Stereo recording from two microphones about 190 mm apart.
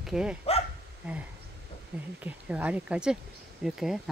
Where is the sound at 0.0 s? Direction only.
5° right (ahead or behind).